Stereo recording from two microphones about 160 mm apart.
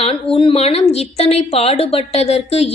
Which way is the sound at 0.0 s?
35° left (ahead or behind).